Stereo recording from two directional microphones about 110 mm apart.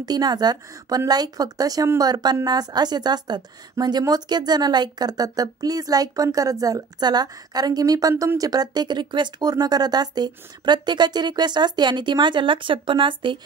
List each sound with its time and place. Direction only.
0.0 s a woman's voice: 40° right (ahead or behind)